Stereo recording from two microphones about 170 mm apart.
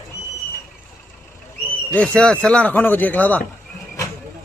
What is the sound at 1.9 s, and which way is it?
Speech, 5° left (ahead or behind).